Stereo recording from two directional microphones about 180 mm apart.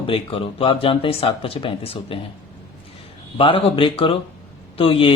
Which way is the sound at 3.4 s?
30° left (ahead or behind).